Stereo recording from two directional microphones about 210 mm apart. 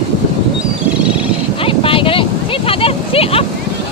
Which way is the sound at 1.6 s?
25° left (ahead or behind).